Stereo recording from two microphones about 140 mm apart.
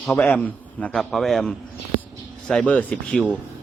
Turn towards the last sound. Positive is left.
turn(degrees=5)  # may be behind; listen again after turning